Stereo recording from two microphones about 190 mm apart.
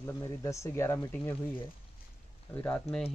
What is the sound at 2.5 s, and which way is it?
Speech, 10° left (ahead or behind).